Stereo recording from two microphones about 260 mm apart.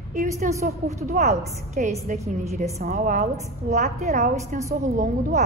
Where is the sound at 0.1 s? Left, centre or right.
Right.